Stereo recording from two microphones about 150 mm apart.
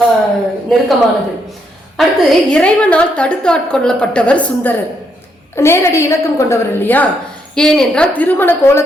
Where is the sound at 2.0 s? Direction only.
Centre (ahead or behind).